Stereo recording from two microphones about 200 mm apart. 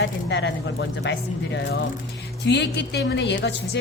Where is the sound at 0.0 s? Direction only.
60° left (ahead or behind).